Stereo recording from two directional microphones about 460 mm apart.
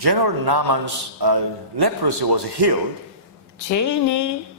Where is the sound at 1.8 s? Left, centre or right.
Right.